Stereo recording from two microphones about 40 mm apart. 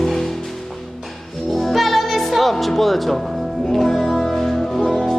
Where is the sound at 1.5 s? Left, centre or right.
Centre.